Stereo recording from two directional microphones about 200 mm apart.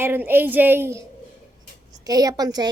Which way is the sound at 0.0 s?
10° right (ahead or behind).